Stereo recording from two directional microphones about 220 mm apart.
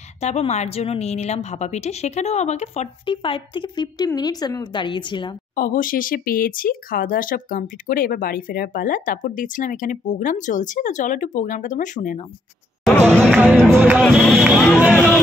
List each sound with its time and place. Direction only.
0.2 s a woman's voice: 30° left (ahead or behind)
5.6 s speech: 40° left (ahead or behind)
12.8 s music: 5° left (ahead or behind)
13.7 s speech: 5° right (ahead or behind)
14.0 s music: centre (ahead or behind)